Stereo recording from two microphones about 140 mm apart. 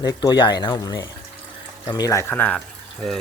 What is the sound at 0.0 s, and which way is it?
Speech, 30° left (ahead or behind).